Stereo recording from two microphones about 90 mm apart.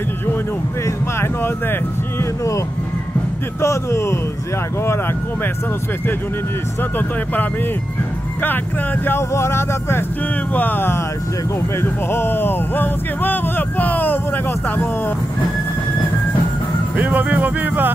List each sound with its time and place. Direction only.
0.8 s a sound: 30° left (ahead or behind)
3.6 s a man's voice: 30° left (ahead or behind)
6.8 s speech: 20° left (ahead or behind)
9.0 s speech: 30° left (ahead or behind)
16.9 s speech: 20° right (ahead or behind)